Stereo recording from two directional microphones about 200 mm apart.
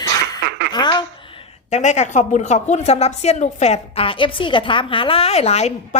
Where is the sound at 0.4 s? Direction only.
60° right (ahead or behind).